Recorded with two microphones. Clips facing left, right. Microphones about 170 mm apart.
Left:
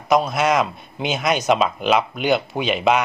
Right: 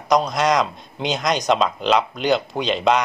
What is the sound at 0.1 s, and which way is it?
A man's voice, 5° left (ahead or behind).